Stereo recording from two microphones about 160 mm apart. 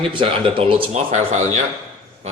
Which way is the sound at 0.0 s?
30° right (ahead or behind).